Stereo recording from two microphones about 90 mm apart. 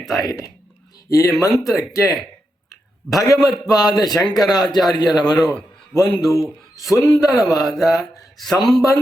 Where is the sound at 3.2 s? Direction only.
40° left (ahead or behind).